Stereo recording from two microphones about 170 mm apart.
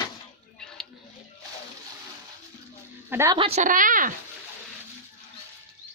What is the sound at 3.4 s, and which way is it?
Speech, 40° right (ahead or behind).